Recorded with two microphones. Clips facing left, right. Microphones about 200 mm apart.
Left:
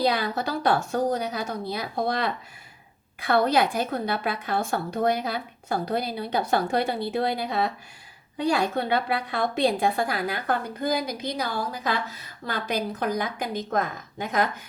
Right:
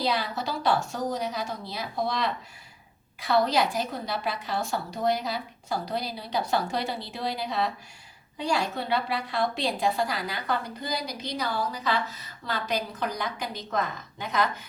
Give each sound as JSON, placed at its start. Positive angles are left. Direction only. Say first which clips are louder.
{"t": 0.0, "sound": "a woman's voice", "louder": "left 4 dB", "side_deg": 55}